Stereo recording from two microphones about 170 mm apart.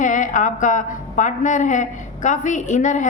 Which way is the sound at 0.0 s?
50° left (ahead or behind).